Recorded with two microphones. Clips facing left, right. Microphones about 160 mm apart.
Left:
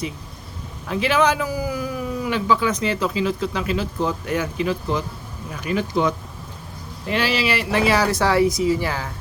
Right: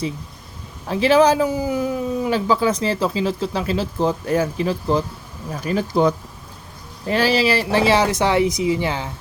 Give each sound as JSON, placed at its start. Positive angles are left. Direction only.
{"t": 0.9, "sound": "speech", "side_deg": -35}